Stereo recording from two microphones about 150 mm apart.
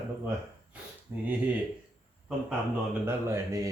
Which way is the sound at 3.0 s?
15° right (ahead or behind).